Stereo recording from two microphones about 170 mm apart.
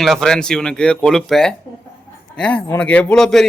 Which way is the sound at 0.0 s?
Centre (ahead or behind).